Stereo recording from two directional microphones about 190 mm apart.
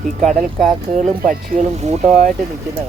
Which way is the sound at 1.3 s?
35° right (ahead or behind).